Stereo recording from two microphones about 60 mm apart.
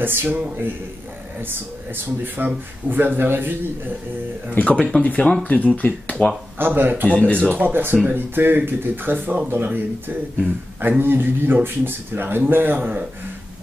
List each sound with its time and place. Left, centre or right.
0.0 s speech: right
2.2 s speech: right
4.6 s speech: left
6.6 s speech: right
7.1 s speech: centre
7.5 s speech: right